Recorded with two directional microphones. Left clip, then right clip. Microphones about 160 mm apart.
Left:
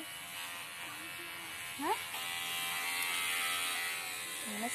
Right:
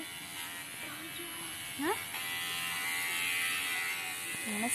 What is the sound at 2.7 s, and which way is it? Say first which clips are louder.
Electric shaver: right 1 dB; 55° left (ahead or behind).